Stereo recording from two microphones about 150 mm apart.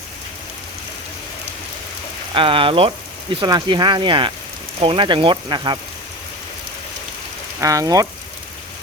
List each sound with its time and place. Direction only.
2.3 s speech: 35° right (ahead or behind)
7.6 s speech: 20° right (ahead or behind)